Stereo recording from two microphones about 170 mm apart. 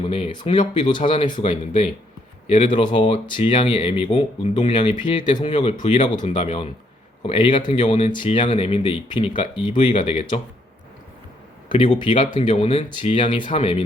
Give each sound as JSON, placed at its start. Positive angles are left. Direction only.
{"t": 0.0, "sound": "speech", "side_deg": 35}
{"t": 5.5, "sound": "speech", "side_deg": 45}
{"t": 11.7, "sound": "speech", "side_deg": 45}